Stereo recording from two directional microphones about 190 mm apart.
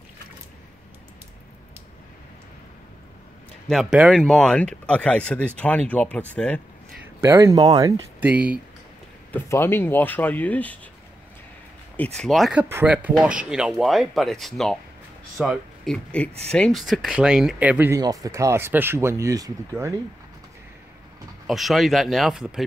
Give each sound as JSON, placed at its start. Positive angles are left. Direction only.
{"t": 3.6, "sound": "speech", "side_deg": 0}
{"t": 7.2, "sound": "speech", "side_deg": -15}
{"t": 8.2, "sound": "speech", "side_deg": -10}
{"t": 9.3, "sound": "speech", "side_deg": 10}
{"t": 12.0, "sound": "speech", "side_deg": 5}
{"t": 21.5, "sound": "speech", "side_deg": 0}